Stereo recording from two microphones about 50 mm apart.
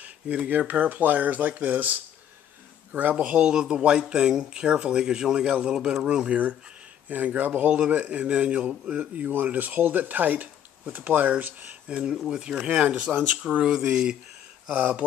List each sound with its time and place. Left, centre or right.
0.7 s speech: right
3.3 s speech: centre
7.1 s speech: right
11.9 s speech: centre
12.6 s speech: right; by 14.1 s centre